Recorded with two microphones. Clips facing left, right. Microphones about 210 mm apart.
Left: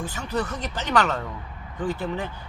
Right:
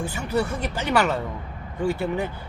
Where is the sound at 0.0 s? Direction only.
10° right (ahead or behind).